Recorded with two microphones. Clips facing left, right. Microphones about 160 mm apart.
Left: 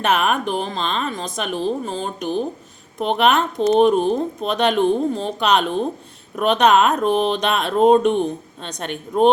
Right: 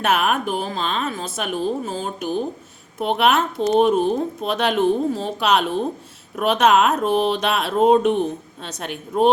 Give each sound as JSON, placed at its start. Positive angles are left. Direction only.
{"t": 0.0, "sound": "speech", "side_deg": -5}